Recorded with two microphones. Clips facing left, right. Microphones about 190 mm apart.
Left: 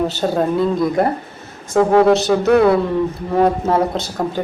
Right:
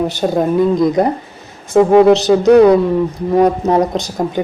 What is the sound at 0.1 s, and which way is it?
Speech, 15° right (ahead or behind).